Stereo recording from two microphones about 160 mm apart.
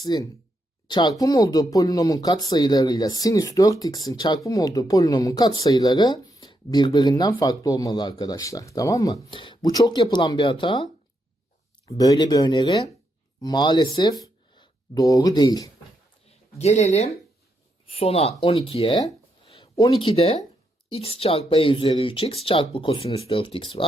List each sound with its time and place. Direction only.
0.0 s speech: 25° left (ahead or behind)
9.3 s speech: 30° left (ahead or behind)
11.9 s speech: 25° left (ahead or behind)
16.3 s speech: 40° left (ahead or behind)